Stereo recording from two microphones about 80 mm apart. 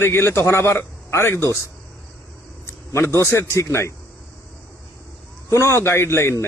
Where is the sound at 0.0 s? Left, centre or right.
Left.